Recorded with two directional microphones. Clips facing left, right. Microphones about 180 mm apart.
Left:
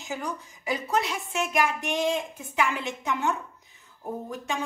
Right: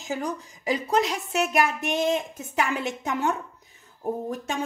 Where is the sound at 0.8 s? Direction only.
40° right (ahead or behind).